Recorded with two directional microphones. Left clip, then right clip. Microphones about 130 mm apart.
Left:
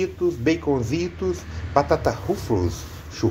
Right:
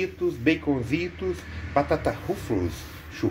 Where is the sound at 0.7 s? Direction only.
10° left (ahead or behind).